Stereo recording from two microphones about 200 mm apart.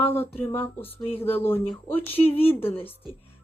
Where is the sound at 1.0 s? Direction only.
30° left (ahead or behind).